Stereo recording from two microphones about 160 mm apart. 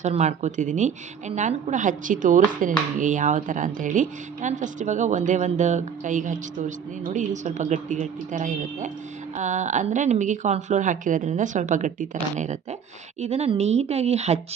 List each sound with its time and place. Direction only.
0.0 s a woman's voice: 45° right (ahead or behind)